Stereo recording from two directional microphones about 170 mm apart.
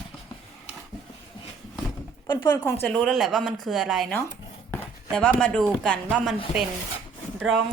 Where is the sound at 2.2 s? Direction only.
25° left (ahead or behind).